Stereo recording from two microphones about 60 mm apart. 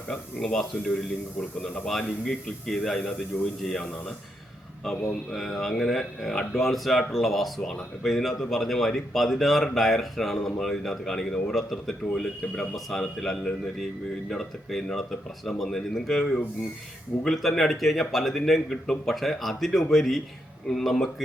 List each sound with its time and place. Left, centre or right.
0.1 s speech: centre
0.5 s speech: centre
4.9 s speech: centre